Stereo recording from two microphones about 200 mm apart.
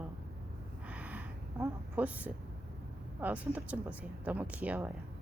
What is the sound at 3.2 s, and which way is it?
A woman's voice, 5° right (ahead or behind).